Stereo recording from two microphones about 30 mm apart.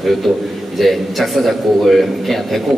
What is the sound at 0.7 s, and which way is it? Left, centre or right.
A man's voice, centre.